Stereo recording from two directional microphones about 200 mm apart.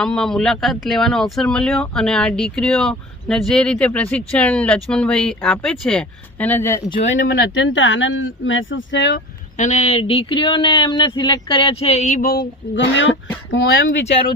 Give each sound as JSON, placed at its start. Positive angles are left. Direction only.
{"t": 0.0, "sound": "speech", "side_deg": 5}
{"t": 7.1, "sound": "speech", "side_deg": 65}
{"t": 9.6, "sound": "speech", "side_deg": 35}
{"t": 12.6, "sound": "speech", "side_deg": 55}
{"t": 13.5, "sound": "speech", "side_deg": 70}